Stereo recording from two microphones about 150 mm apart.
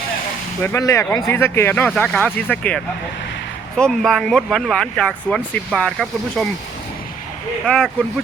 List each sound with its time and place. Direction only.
0.6 s speech: 20° left (ahead or behind); by 6.5 s centre (ahead or behind)
7.7 s speech: 10° left (ahead or behind)